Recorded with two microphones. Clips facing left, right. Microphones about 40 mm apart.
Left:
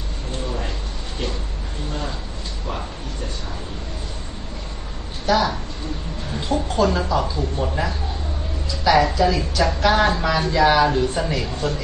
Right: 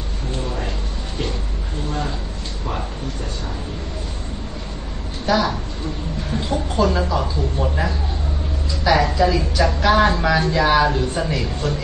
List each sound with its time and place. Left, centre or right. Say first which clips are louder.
5.2 s a woman's voice: even; centre
6.8 s a woman's voice: right 1 dB; centre